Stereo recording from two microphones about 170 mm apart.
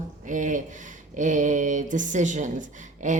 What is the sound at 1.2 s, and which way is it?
A woman's voice, 45° right (ahead or behind).